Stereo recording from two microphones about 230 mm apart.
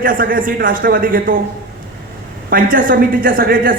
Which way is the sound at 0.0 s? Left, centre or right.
Right.